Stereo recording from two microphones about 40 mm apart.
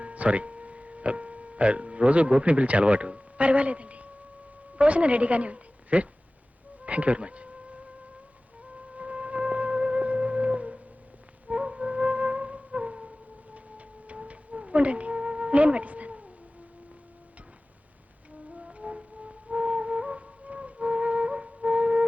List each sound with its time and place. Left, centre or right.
0.0 s music: right
2.3 s a woman's voice: right
6.8 s music: right
18.5 s music: right